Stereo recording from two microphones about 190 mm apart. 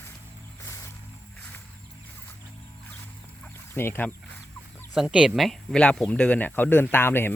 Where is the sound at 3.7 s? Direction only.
10° left (ahead or behind).